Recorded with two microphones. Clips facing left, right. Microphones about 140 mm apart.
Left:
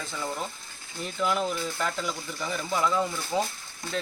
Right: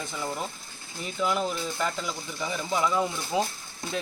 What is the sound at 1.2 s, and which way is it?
Speech, centre (ahead or behind).